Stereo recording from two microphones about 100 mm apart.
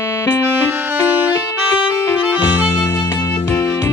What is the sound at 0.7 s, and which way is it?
Music, 20° right (ahead or behind).